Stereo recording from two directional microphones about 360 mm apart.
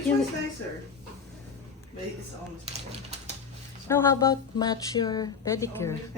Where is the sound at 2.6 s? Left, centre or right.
Centre.